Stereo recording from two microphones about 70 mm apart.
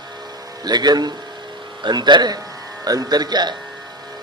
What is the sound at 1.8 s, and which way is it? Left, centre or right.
Speech, right.